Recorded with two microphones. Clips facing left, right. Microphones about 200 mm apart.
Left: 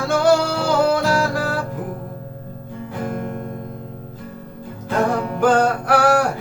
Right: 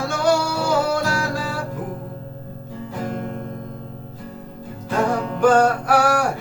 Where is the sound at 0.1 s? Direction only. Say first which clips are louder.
Left 5 dB; 60° left (ahead or behind).